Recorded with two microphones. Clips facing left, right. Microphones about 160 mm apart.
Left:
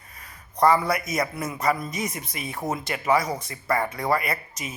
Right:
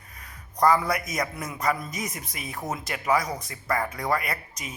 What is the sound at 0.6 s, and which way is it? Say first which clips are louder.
A man's voice: left 2 dB; centre (ahead or behind).